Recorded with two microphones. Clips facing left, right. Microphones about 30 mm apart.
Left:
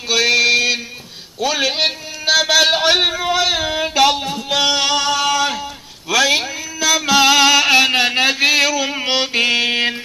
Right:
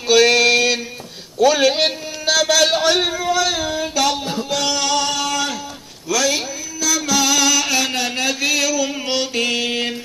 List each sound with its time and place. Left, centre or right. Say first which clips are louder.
0.1 s music: right 1 dB; centre
1.4 s a man's voice: right 3 dB; centre; by 4.3 s left
4.5 s a sound: left 5 dB; left